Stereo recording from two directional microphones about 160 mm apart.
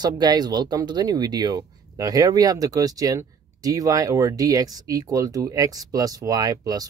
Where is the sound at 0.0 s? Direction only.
25° right (ahead or behind).